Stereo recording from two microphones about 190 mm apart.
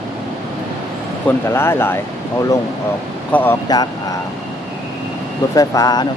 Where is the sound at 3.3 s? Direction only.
10° left (ahead or behind).